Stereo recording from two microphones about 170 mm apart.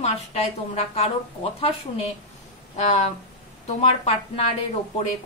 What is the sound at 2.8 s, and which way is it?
A woman's voice, 45° left (ahead or behind).